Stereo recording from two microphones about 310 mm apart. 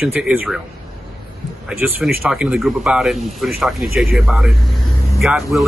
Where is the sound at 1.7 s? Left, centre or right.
Centre.